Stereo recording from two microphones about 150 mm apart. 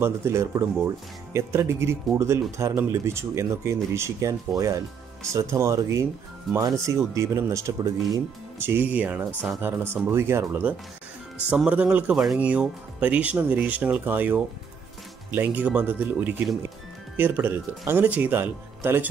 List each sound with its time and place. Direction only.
0.0 s speech: 20° right (ahead or behind)